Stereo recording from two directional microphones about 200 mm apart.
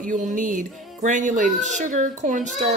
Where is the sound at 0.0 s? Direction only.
40° right (ahead or behind).